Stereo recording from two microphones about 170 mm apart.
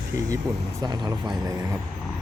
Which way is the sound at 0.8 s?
25° right (ahead or behind).